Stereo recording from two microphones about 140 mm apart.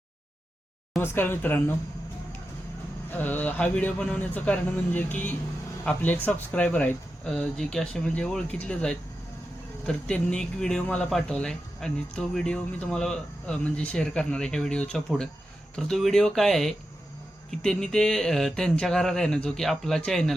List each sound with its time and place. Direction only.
1.0 s speech: 15° left (ahead or behind)
3.1 s speech: 15° left (ahead or behind)